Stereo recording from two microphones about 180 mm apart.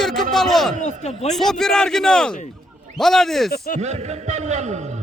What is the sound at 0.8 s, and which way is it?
Speech, 40° left (ahead or behind).